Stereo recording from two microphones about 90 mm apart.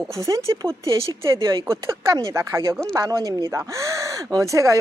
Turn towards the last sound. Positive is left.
turn(degrees=-35)  # may be behind; listen again after turning